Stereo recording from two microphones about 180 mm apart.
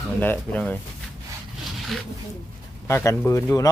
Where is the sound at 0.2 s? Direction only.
10° left (ahead or behind).